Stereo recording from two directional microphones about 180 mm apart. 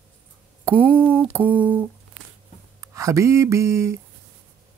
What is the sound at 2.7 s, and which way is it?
Speech, 20° right (ahead or behind).